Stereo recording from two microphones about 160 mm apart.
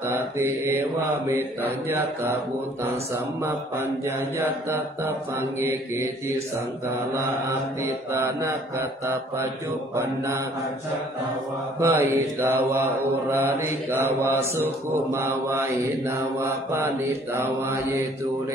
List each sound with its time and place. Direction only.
0.1 s mantra: 15° right (ahead or behind)
1.9 s mantra: 15° right (ahead or behind)
3.4 s mantra: 15° right (ahead or behind)
11.8 s mantra: 20° right (ahead or behind)